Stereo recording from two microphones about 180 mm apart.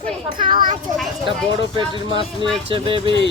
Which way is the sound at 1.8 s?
25° right (ahead or behind).